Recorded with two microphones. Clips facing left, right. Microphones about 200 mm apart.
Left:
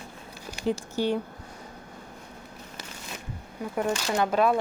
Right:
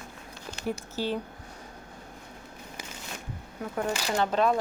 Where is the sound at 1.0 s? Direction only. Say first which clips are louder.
Left 4 dB; 15° left (ahead or behind).